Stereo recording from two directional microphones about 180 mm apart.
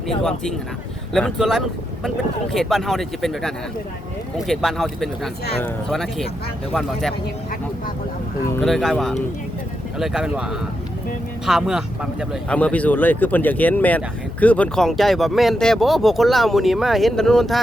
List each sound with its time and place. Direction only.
0.2 s speech: 5° left (ahead or behind)
8.6 s speech: centre (ahead or behind)